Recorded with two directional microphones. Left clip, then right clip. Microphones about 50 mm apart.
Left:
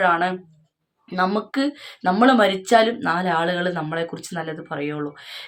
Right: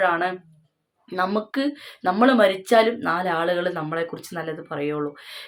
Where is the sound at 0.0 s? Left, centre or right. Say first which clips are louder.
Left 2 dB; left.